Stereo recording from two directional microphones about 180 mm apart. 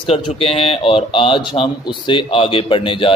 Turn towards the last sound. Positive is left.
turn(degrees=30)  # may be behind; listen again after turning